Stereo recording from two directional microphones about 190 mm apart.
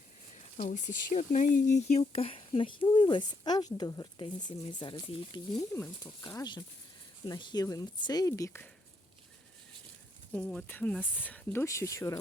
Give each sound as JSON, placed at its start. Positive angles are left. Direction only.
{"t": 0.5, "sound": "speech", "side_deg": 40}
{"t": 10.3, "sound": "speech", "side_deg": 5}